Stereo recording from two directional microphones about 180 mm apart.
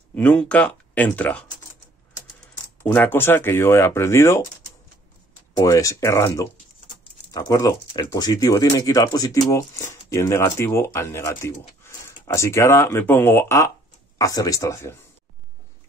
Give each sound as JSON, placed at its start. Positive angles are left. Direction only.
{"t": 0.1, "sound": "speech", "side_deg": 10}
{"t": 2.8, "sound": "speech", "side_deg": 10}
{"t": 5.6, "sound": "speech", "side_deg": 20}